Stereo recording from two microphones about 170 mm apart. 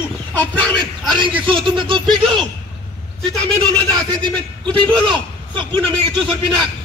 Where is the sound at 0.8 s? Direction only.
30° right (ahead or behind).